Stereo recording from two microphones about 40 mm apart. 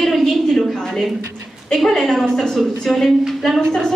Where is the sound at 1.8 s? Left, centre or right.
Centre.